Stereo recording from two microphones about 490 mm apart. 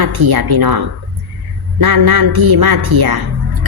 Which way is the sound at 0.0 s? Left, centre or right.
Right.